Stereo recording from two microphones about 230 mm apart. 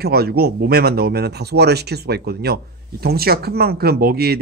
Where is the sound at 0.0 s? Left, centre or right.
Right.